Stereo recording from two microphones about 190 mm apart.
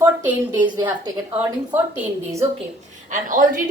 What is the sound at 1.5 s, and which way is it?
Speech, 10° right (ahead or behind).